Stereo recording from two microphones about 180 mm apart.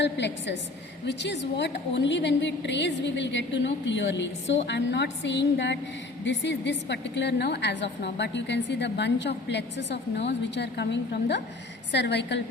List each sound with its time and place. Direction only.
0.0 s a woman's voice: 75° left (ahead or behind)